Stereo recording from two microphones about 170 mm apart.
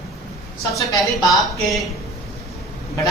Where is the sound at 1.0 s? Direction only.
Centre (ahead or behind).